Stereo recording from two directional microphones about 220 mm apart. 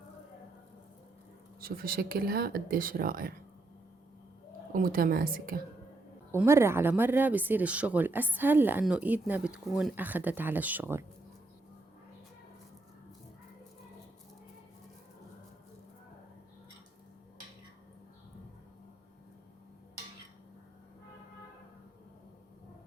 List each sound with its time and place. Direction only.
1.6 s speech: 40° right (ahead or behind)
4.7 s speech: 40° right (ahead or behind)
6.3 s speech: 10° right (ahead or behind)